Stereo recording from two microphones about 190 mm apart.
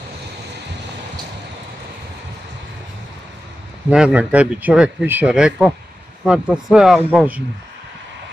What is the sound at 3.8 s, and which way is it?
Speech, 5° right (ahead or behind).